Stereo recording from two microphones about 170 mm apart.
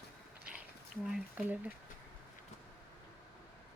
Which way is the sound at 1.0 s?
5° right (ahead or behind).